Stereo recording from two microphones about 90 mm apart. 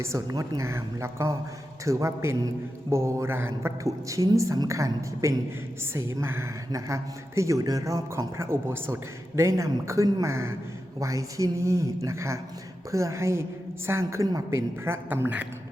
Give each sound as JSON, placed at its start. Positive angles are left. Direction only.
{"t": 0.0, "sound": "a woman's voice", "side_deg": -35}